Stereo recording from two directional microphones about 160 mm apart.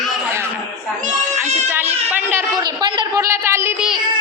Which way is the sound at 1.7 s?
10° right (ahead or behind).